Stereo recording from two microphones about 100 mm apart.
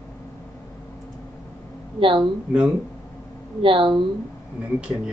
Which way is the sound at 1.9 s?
60° right (ahead or behind).